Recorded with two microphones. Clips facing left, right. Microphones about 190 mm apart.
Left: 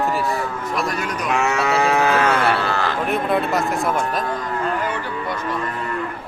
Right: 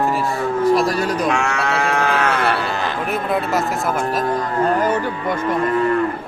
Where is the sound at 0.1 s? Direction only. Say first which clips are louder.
Right 1 dB; centre (ahead or behind).